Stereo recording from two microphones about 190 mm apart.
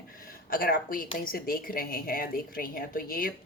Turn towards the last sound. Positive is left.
turn(degrees=50)  # may be behind; listen again after turning